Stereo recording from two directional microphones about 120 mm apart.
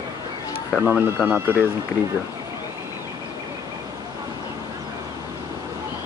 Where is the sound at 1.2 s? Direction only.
20° right (ahead or behind).